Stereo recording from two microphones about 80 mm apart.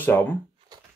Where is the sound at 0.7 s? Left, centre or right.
Right.